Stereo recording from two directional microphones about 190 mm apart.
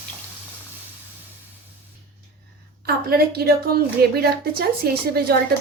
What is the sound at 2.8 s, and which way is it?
A woman's voice, 55° right (ahead or behind).